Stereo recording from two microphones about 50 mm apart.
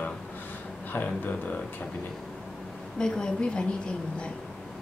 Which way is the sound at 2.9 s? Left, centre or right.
Centre.